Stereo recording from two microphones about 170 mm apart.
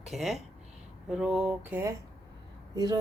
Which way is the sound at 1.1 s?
5° right (ahead or behind).